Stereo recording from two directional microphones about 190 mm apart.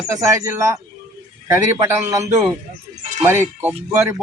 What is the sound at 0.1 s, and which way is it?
Speech, 15° right (ahead or behind).